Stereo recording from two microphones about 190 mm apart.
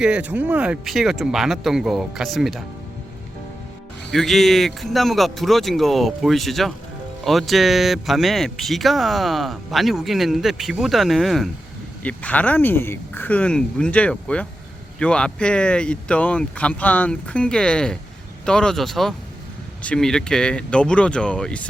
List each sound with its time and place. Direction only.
0.0 s speech: 5° right (ahead or behind)
4.1 s speech: centre (ahead or behind)